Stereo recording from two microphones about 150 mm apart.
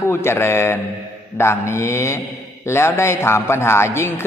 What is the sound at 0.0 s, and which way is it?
A man's voice, 15° left (ahead or behind).